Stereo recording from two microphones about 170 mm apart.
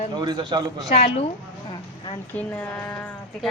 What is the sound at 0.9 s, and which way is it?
Speech, 40° left (ahead or behind).